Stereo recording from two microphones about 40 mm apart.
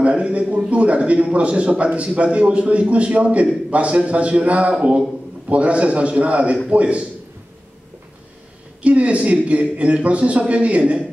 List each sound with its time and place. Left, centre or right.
0.0 s speech: right
8.8 s speech: right
10.8 s a woman's voice: right